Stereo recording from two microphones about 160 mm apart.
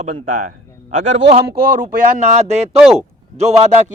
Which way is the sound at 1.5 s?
65° right (ahead or behind).